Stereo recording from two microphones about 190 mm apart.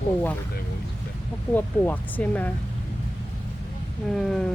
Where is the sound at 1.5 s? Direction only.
10° left (ahead or behind).